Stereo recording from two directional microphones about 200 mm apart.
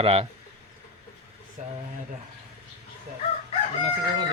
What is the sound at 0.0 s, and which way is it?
Speech, 30° right (ahead or behind).